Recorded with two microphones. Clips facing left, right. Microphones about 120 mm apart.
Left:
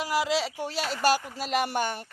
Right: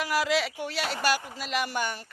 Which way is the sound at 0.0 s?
25° left (ahead or behind).